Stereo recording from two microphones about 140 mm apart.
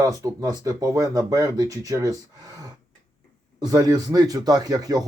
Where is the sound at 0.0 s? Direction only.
25° right (ahead or behind).